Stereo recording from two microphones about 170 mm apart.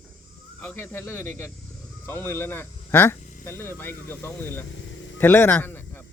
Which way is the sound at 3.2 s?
50° left (ahead or behind).